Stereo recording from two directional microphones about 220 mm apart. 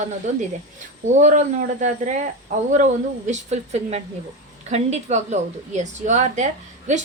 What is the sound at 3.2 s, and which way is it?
A woman's voice, 30° right (ahead or behind).